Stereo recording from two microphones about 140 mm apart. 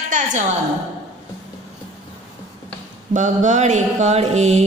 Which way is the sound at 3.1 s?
60° right (ahead or behind).